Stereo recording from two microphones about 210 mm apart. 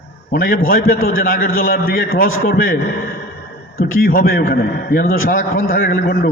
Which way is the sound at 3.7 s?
45° left (ahead or behind).